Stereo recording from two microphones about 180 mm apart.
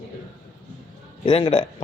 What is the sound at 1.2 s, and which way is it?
Speech, 30° left (ahead or behind).